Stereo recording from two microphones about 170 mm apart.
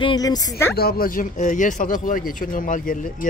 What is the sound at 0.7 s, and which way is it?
Speech, 65° left (ahead or behind).